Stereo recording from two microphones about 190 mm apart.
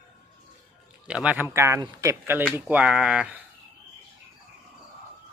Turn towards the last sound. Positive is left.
turn(degrees=-5)  # may be behind; listen again after turning